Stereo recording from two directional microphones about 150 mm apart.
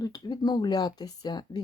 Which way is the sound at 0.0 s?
25° left (ahead or behind).